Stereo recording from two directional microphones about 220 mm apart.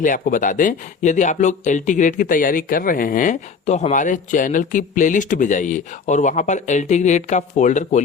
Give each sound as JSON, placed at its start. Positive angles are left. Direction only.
{"t": 0.0, "sound": "speech", "side_deg": 35}